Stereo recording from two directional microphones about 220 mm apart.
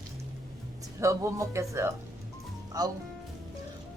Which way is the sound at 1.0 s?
15° right (ahead or behind).